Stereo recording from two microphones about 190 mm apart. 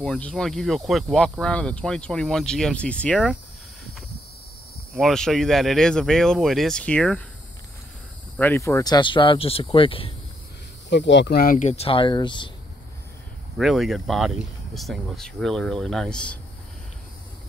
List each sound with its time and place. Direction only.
0.0 s speech: 5° left (ahead or behind)
4.9 s speech: centre (ahead or behind)
8.4 s speech: 15° left (ahead or behind); by 10.1 s 30° left (ahead or behind)
10.9 s speech: 70° left (ahead or behind); by 12.4 s 25° left (ahead or behind)
13.6 s speech: centre (ahead or behind)